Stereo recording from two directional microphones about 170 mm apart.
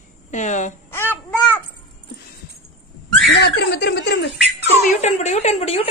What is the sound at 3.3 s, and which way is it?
Chuckle, 75° left (ahead or behind).